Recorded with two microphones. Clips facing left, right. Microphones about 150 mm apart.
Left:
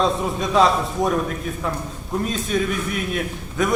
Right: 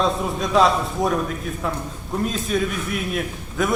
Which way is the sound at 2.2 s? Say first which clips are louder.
Even; centre (ahead or behind).